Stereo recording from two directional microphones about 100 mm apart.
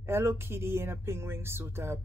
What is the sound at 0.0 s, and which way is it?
Speech, 25° right (ahead or behind).